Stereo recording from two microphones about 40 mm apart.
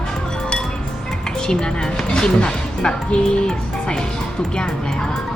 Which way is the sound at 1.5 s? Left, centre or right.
Centre.